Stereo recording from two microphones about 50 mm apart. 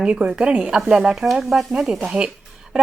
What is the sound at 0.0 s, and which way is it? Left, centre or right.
A woman's voice, right.